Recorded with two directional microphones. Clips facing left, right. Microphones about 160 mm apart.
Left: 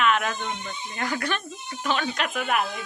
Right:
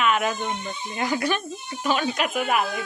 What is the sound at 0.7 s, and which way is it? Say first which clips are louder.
Speech: right 4 dB; 25° right (ahead or behind).